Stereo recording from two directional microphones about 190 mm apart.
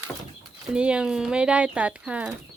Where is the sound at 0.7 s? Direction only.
5° right (ahead or behind).